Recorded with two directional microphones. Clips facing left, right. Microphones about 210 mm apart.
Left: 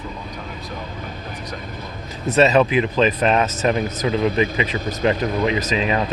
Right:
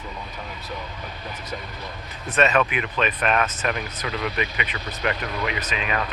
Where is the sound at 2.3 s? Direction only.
25° left (ahead or behind).